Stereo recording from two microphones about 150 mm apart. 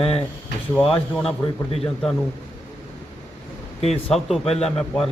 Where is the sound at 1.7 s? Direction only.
40° left (ahead or behind).